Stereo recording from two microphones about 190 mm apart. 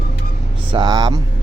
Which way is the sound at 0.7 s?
25° right (ahead or behind).